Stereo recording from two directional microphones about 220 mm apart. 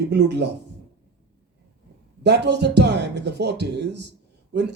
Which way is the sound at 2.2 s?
50° right (ahead or behind).